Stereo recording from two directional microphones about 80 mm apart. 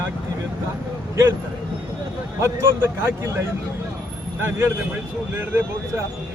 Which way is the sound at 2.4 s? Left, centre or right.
Right.